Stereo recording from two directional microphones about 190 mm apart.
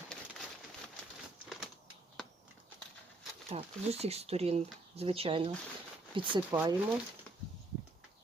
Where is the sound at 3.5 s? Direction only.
30° right (ahead or behind).